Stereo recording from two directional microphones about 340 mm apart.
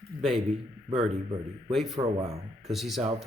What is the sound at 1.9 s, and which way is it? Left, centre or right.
Speech, centre.